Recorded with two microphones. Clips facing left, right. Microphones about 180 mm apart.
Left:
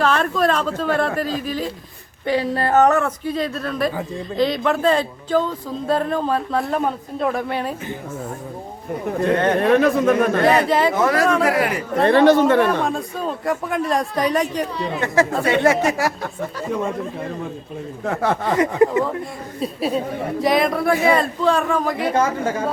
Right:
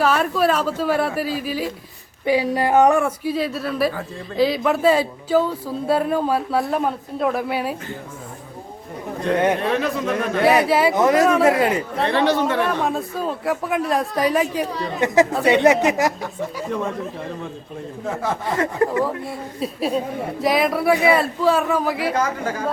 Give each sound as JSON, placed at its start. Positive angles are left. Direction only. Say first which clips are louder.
{"t": 0.0, "sound": "speech", "louder": "even", "side_deg": -10}
{"t": 9.6, "sound": "a man's voice", "louder": "left 6 dB", "side_deg": 55}
{"t": 10.4, "sound": "speech", "louder": "even", "side_deg": -10}
{"t": 11.0, "sound": "speech", "louder": "right 2 dB", "side_deg": -20}
{"t": 12.0, "sound": "a man's voice", "louder": "left 7 dB", "side_deg": 50}
{"t": 12.8, "sound": "speech", "louder": "even", "side_deg": -5}
{"t": 15.0, "sound": "speech", "louder": "right 3 dB", "side_deg": -15}
{"t": 18.0, "sound": "speech", "louder": "left 4 dB", "side_deg": 65}
{"t": 18.5, "sound": "speech", "louder": "left 3 dB", "side_deg": 15}
{"t": 19.5, "sound": "speech", "louder": "left 1 dB", "side_deg": 0}
{"t": 22.1, "sound": "speech", "louder": "left 3 dB", "side_deg": 25}